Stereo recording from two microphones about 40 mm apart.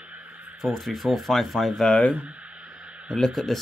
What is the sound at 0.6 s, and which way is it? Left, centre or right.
Speech, centre.